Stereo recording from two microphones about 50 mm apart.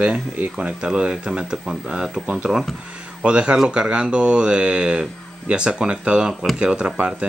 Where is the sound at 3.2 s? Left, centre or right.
Right.